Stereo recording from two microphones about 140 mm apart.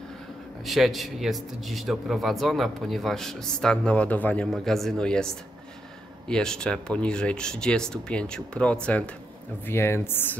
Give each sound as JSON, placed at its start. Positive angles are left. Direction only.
{"t": 0.7, "sound": "speech", "side_deg": 0}